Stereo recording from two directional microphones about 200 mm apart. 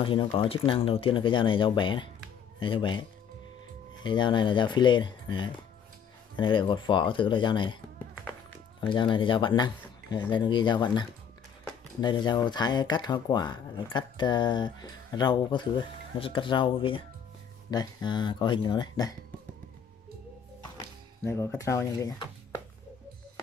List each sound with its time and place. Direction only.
0.0 s speech: 25° left (ahead or behind)
8.8 s speech: 25° left (ahead or behind)
21.2 s speech: 10° left (ahead or behind)